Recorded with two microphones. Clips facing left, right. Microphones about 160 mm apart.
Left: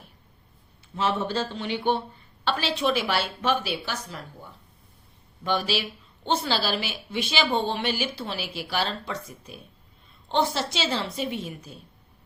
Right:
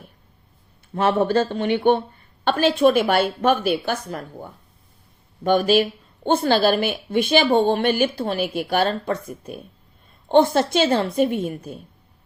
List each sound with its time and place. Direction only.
0.9 s speech: 55° right (ahead or behind)